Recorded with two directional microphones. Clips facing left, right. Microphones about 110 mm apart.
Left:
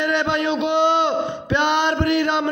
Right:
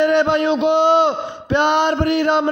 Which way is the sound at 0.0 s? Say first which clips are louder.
Right 6 dB; 40° right (ahead or behind).